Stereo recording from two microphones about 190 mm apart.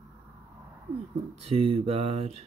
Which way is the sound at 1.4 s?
30° right (ahead or behind).